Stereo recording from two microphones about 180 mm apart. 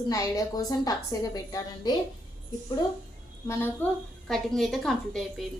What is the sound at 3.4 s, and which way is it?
Speech, 15° left (ahead or behind).